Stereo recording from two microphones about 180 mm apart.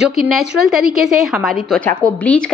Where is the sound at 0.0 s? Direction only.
Centre (ahead or behind).